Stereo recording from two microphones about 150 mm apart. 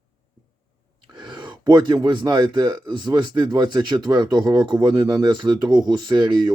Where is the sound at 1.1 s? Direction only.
30° right (ahead or behind).